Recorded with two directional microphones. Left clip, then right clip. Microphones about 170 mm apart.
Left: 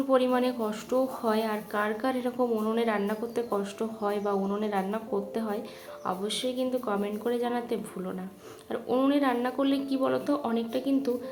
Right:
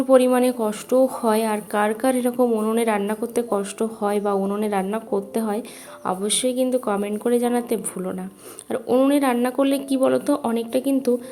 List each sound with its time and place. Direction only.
0.1 s speech: 40° right (ahead or behind)